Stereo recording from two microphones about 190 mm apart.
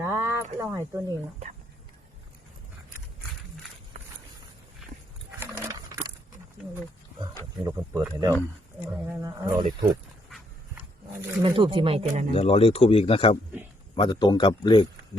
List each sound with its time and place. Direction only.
0.0 s a sound: 15° right (ahead or behind)
0.6 s speech: 15° right (ahead or behind)
5.4 s a sound: 10° right (ahead or behind)
7.6 s speech: 15° right (ahead or behind)
11.1 s speech: 15° right (ahead or behind)
11.5 s speech: 25° right (ahead or behind)
12.3 s a man's voice: 30° left (ahead or behind)